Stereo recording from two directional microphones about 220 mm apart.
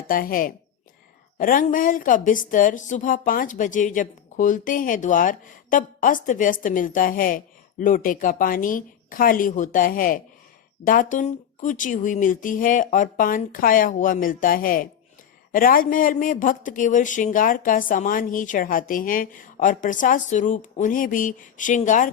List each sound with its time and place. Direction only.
0.1 s a woman's voice: 40° left (ahead or behind)